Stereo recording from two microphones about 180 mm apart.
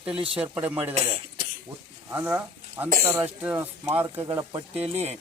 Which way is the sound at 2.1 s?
10° right (ahead or behind).